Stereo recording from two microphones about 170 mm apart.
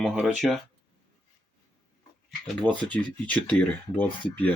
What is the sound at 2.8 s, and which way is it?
Speech, 10° left (ahead or behind).